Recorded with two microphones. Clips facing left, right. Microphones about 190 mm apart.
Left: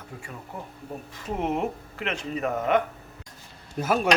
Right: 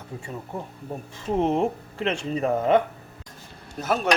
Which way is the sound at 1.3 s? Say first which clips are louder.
Right 5 dB; 30° right (ahead or behind).